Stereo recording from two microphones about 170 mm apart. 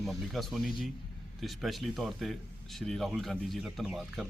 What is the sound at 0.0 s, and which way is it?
Speech, centre (ahead or behind).